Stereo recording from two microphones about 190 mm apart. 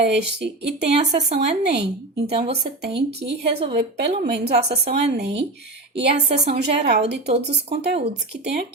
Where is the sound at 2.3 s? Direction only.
30° right (ahead or behind).